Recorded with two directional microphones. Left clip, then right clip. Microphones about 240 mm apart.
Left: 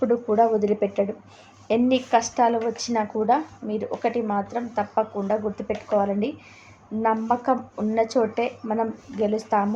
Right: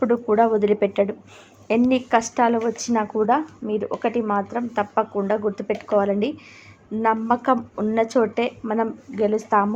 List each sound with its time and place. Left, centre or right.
0.0 s a woman's voice: centre